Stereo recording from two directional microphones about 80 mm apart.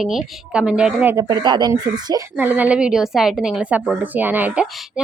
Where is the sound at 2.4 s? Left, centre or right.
Right.